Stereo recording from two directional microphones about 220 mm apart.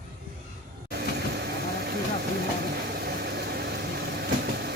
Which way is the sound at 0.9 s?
45° right (ahead or behind).